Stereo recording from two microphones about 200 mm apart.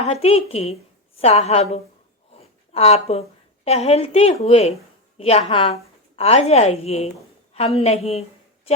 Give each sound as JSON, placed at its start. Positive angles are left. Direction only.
{"t": 0.0, "sound": "a woman's voice", "side_deg": 30}